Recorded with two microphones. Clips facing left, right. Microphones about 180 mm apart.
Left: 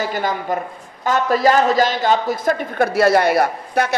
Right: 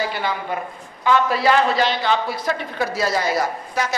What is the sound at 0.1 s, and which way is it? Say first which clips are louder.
A man's voice: left 4 dB; 45° left (ahead or behind).